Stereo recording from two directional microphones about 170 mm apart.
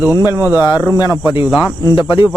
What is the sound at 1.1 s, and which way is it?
Speech, 10° right (ahead or behind).